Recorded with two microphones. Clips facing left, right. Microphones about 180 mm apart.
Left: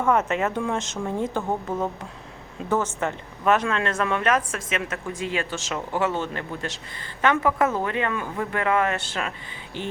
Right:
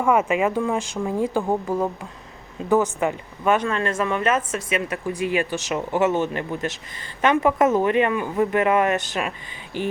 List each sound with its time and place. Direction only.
0.0 s speech: 10° right (ahead or behind)